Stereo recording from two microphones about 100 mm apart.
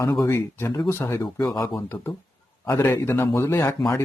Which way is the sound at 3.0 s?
25° left (ahead or behind).